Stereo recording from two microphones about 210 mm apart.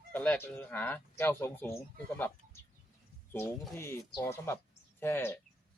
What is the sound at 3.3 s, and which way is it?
Speech, 10° left (ahead or behind).